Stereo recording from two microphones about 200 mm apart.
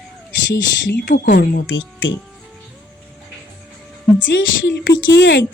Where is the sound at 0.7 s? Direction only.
50° left (ahead or behind).